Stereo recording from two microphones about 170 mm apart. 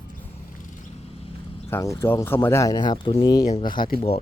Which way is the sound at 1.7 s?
15° left (ahead or behind).